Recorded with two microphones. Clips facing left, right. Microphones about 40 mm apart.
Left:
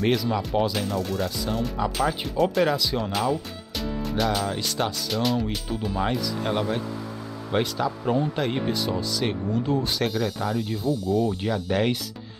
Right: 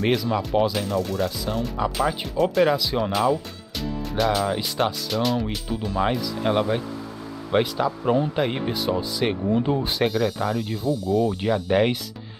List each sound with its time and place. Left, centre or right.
0.0 s speech: centre
6.4 s speech: centre
9.8 s speech: centre